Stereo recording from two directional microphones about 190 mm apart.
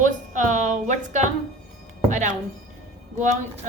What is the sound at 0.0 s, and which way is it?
A woman's voice, 40° right (ahead or behind).